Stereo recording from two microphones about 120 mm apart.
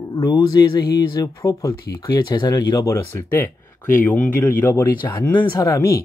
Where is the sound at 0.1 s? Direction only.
35° left (ahead or behind); by 5.3 s 15° left (ahead or behind).